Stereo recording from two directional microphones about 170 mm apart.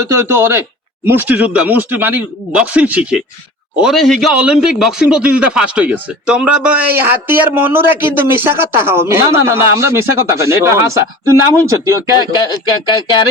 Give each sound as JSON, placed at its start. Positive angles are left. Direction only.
{"t": 0.1, "sound": "speech", "side_deg": -15}
{"t": 12.6, "sound": "speech", "side_deg": 25}